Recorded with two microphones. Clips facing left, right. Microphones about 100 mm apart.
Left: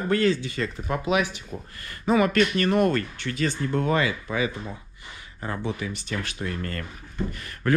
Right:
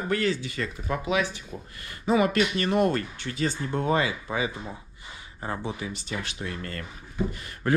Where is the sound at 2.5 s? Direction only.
55° left (ahead or behind).